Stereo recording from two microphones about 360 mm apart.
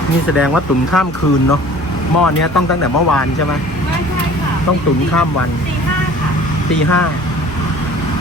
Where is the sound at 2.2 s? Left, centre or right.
Left.